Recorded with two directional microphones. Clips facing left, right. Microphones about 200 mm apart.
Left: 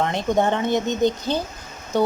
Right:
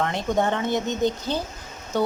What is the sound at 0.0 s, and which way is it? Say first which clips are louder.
Speech: left 3 dB; 20° left (ahead or behind).